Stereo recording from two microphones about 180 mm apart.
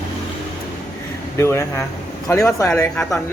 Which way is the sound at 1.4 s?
15° left (ahead or behind).